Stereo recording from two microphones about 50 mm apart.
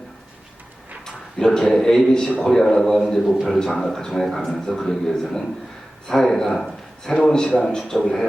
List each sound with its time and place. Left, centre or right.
1.0 s a man's voice: centre